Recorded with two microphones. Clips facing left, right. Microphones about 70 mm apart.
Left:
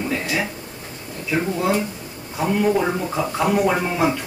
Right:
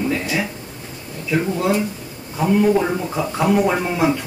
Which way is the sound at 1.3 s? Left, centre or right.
Centre.